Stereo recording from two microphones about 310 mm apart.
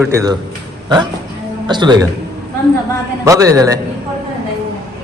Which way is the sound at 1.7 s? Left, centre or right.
Centre.